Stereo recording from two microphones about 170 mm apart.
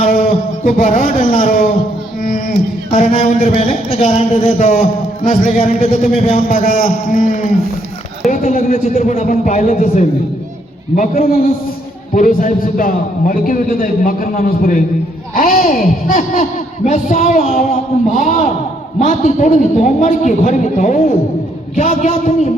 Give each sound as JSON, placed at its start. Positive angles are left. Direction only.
{"t": 0.0, "sound": "a sound", "side_deg": 50}
{"t": 2.5, "sound": "speech", "side_deg": 40}
{"t": 8.7, "sound": "speech", "side_deg": 40}